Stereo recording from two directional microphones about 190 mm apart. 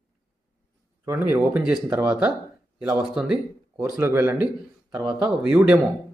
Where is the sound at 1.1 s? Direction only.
10° right (ahead or behind).